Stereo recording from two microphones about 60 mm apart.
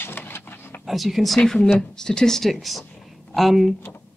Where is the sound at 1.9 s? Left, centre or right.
Centre.